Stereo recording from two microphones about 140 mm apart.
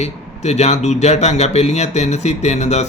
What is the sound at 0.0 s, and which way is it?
Speech, 50° left (ahead or behind).